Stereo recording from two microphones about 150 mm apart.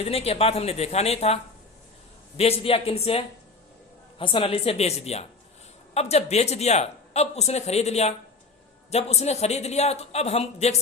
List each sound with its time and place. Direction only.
0.0 s speech: 40° left (ahead or behind)
2.4 s a woman's voice: 40° left (ahead or behind)